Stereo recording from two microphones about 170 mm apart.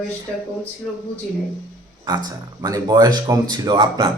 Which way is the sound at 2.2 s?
25° right (ahead or behind).